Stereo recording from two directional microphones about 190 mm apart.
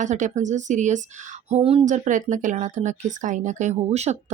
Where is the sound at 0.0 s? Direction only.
40° right (ahead or behind).